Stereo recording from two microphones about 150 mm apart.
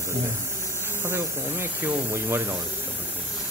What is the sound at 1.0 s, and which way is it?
Speech, 15° right (ahead or behind).